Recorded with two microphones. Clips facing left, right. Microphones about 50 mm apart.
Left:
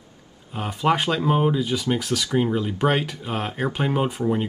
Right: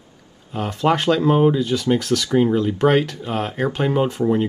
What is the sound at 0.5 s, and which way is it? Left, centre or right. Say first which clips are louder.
Speech: right 2 dB; centre.